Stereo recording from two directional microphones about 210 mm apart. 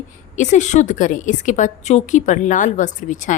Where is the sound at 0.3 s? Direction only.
35° left (ahead or behind).